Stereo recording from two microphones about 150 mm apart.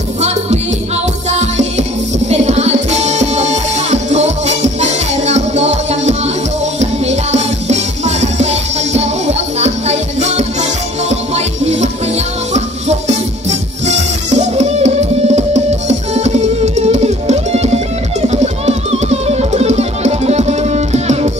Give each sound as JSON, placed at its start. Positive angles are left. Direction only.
{"t": 0.2, "sound": "music", "side_deg": -45}